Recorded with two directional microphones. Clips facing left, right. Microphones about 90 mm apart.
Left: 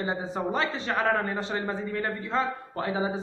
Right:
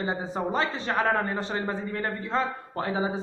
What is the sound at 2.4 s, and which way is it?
Speech, 35° right (ahead or behind).